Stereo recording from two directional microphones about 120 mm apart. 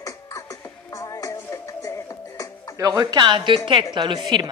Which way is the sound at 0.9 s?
30° left (ahead or behind).